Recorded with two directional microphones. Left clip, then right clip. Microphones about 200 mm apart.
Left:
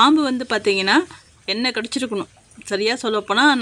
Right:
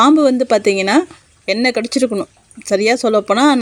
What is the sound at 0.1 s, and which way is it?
Speech, 5° right (ahead or behind).